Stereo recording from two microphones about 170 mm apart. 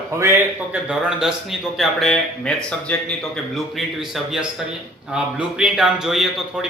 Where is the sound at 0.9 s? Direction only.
5° right (ahead or behind).